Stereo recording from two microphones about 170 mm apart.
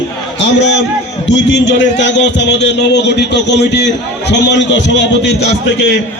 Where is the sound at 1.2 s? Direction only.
90° left.